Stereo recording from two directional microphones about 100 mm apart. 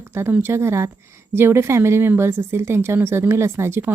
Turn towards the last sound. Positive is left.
turn(degrees=-25)  # may be behind; listen again after turning